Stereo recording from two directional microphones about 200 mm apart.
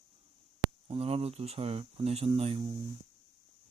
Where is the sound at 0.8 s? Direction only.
30° right (ahead or behind).